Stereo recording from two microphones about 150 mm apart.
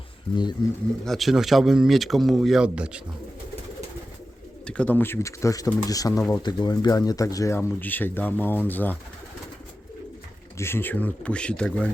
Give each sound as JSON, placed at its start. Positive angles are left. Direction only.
{"t": 1.0, "sound": "speech", "side_deg": 0}
{"t": 4.6, "sound": "speech", "side_deg": 5}
{"t": 10.6, "sound": "speech", "side_deg": 15}